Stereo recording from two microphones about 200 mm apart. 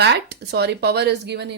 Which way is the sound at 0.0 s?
55° right (ahead or behind).